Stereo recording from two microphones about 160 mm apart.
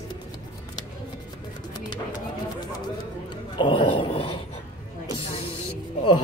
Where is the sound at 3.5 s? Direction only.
30° left (ahead or behind).